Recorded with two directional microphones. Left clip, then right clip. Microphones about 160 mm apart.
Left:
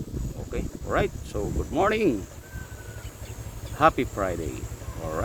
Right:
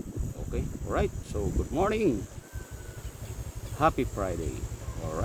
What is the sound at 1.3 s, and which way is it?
Speech, 15° left (ahead or behind).